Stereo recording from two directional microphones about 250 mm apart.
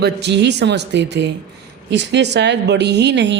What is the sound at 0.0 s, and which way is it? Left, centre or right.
Speech, right.